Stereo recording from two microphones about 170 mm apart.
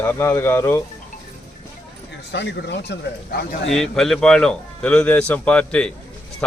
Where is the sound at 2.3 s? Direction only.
90° left.